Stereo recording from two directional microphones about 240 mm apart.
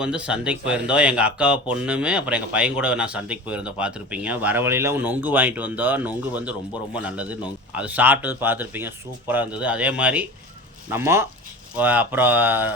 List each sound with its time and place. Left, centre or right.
0.0 s speech: centre